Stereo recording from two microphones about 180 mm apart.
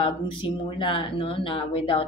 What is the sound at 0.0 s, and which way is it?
Speech, 30° left (ahead or behind).